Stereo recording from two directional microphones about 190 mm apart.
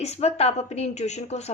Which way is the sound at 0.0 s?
35° left (ahead or behind).